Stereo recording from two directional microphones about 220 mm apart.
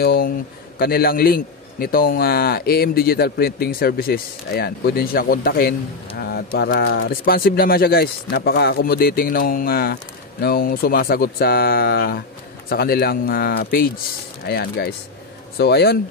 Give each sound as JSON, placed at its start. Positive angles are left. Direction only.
{"t": 0.0, "sound": "a man's voice", "side_deg": 45}